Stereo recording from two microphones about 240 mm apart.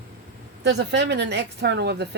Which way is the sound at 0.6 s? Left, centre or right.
Right.